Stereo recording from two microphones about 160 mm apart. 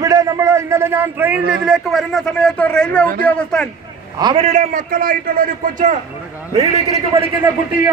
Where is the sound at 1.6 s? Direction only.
Centre (ahead or behind).